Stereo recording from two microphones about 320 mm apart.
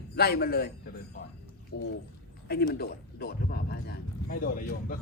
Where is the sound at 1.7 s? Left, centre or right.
Left.